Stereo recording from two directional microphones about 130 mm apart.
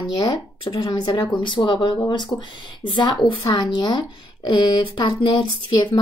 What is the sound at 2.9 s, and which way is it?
Speech, 35° left (ahead or behind).